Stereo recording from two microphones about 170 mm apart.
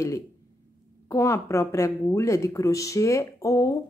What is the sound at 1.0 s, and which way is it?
A woman's voice, 15° left (ahead or behind).